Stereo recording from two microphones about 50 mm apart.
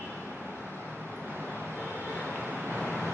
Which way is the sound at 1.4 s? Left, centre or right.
Left.